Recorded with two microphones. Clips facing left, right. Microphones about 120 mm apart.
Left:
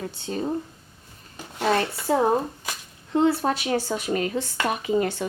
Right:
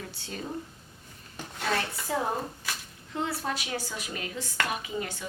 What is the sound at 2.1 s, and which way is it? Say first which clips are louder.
Speech: left 9 dB; 35° left (ahead or behind).